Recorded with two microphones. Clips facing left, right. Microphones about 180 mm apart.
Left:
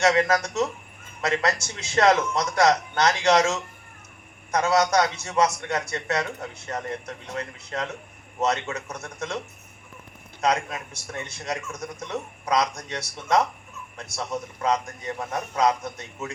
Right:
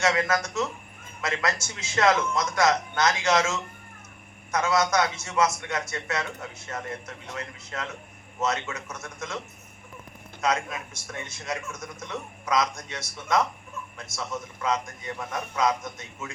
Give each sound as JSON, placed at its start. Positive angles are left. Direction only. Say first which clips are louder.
{"t": 0.0, "sound": "a man's voice", "louder": "left 4 dB", "side_deg": 35}
{"t": 10.4, "sound": "a man's voice", "louder": "left 3 dB", "side_deg": 35}